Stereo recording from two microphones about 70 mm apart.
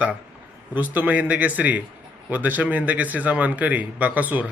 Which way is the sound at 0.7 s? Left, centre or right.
Right.